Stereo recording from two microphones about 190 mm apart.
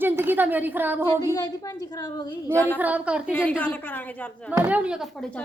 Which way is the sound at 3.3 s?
10° left (ahead or behind).